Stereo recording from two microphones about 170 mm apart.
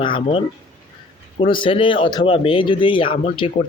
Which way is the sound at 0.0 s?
30° left (ahead or behind).